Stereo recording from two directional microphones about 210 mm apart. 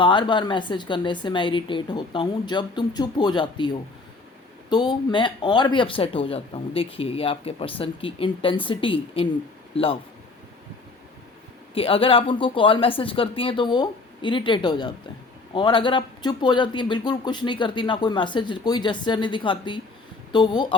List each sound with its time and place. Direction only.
0.0 s speech: 20° left (ahead or behind)
11.7 s speech: 25° left (ahead or behind)